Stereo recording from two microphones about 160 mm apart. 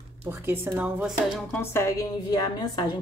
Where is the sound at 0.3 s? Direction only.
15° right (ahead or behind).